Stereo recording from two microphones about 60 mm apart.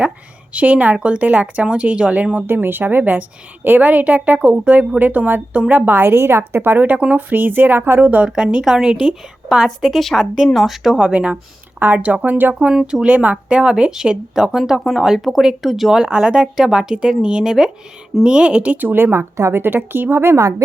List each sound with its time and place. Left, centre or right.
0.5 s a woman's voice: right
2.5 s a woman's voice: right
8.3 s a woman's voice: centre
10.9 s a woman's voice: centre
12.5 s a woman's voice: centre; by 20.3 s right